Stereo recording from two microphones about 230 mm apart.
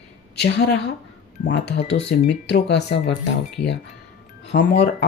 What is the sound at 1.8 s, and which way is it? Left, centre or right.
Speech, left.